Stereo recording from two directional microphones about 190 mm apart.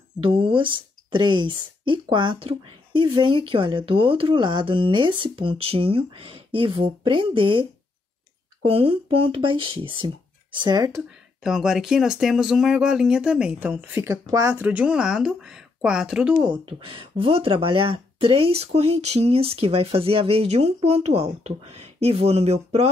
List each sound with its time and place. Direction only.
0.2 s speech: 30° right (ahead or behind)
8.6 s speech: 30° right (ahead or behind)
11.0 s speech: 5° right (ahead or behind)
16.3 s speech: 25° right (ahead or behind)